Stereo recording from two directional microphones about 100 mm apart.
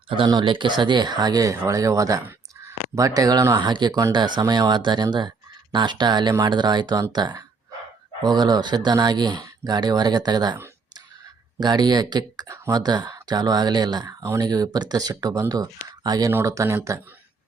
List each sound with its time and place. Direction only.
0.1 s speech: 50° right (ahead or behind)
3.7 s speech: 50° right (ahead or behind)
11.6 s speech: 45° right (ahead or behind)
12.5 s speech: 30° right (ahead or behind)
12.8 s speech: 45° right (ahead or behind); by 17.0 s 30° right (ahead or behind)